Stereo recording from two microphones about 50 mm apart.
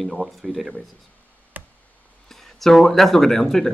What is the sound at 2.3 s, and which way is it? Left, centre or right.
Speech, centre.